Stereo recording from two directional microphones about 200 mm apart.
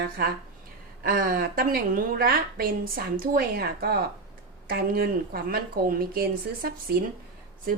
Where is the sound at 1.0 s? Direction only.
45° right (ahead or behind).